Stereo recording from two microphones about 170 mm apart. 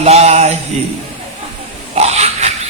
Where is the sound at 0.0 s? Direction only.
40° right (ahead or behind).